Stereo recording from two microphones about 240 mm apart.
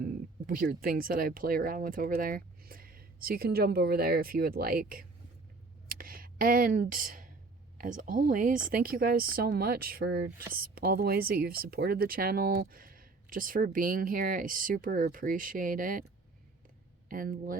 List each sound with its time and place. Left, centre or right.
0.0 s speech: right
6.0 s a sound: right
7.8 s speech: right
17.1 s speech: right